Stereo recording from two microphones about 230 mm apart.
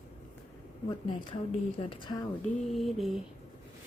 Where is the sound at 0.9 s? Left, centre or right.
Left.